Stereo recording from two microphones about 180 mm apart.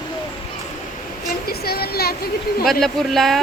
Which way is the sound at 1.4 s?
60° left (ahead or behind).